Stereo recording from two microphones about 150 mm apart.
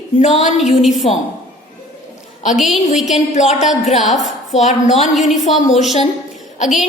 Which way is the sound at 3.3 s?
50° left (ahead or behind).